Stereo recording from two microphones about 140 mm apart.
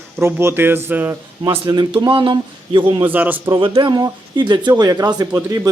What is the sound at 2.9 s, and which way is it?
Speech, 25° right (ahead or behind).